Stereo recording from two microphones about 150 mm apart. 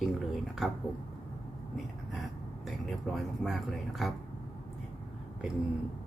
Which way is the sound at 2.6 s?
Centre (ahead or behind).